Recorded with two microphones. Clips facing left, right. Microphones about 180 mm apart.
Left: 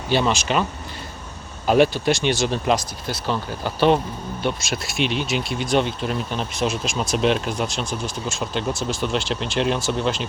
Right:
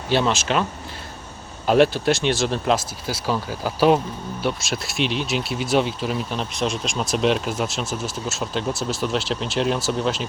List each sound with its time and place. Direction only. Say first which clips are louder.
0.1 s speech: even; centre (ahead or behind)
1.6 s speech: even; centre (ahead or behind)